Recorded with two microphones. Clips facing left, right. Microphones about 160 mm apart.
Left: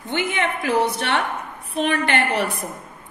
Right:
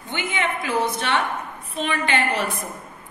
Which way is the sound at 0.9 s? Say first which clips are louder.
Even; 65° left (ahead or behind).